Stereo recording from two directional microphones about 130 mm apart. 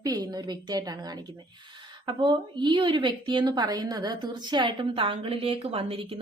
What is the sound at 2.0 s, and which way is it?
A woman's voice, 35° right (ahead or behind).